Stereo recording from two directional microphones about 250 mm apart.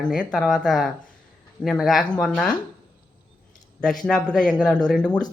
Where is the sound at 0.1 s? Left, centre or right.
Centre.